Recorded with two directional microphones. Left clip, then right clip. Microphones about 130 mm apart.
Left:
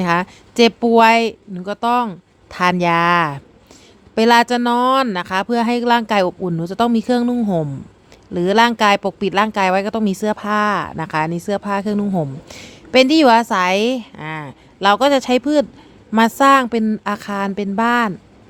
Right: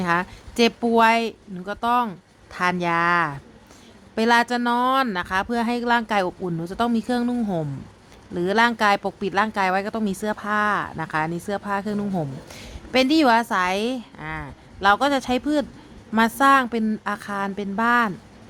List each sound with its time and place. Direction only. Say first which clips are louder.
0.0 s speech: left 5 dB; 45° left (ahead or behind)